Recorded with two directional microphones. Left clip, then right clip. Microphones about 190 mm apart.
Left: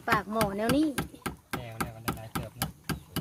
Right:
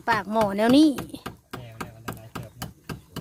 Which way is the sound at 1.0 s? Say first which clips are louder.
Even; 60° left (ahead or behind).